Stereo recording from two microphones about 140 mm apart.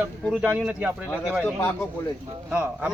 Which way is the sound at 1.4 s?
15° left (ahead or behind).